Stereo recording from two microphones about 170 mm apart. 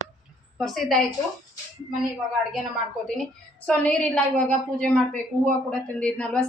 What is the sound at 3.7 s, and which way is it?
A woman's voice, 5° left (ahead or behind).